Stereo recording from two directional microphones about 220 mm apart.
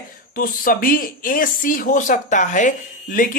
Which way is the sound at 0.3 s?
40° left (ahead or behind).